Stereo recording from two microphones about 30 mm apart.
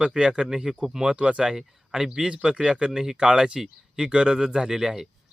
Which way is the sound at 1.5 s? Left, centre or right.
Right.